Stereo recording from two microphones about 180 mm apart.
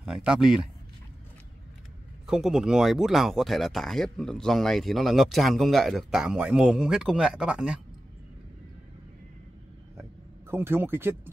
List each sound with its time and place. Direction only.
0.0 s speech: 5° right (ahead or behind)
2.2 s speech: centre (ahead or behind)
10.5 s speech: 10° right (ahead or behind)